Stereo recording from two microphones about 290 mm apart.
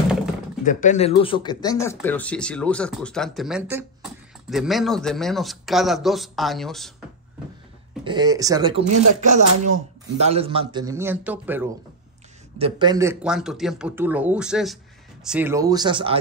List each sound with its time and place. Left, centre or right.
0.7 s speech: left; by 6.9 s centre
8.0 s speech: centre
12.5 s speech: centre